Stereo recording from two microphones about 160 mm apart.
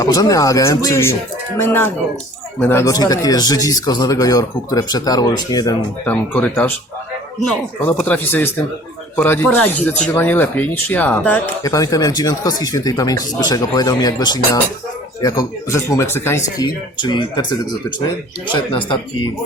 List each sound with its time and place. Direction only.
0.0 s speech: 20° left (ahead or behind)
6.1 s speech: 10° left (ahead or behind)
11.6 s speech: 20° left (ahead or behind)
18.5 s speech: 30° left (ahead or behind)